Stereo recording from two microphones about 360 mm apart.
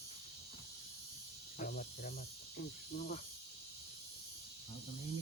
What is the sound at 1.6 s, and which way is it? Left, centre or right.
Speech, left.